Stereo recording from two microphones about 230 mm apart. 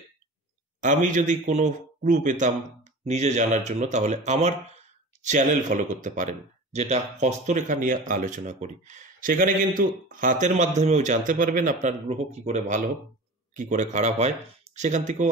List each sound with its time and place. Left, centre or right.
0.7 s speech: right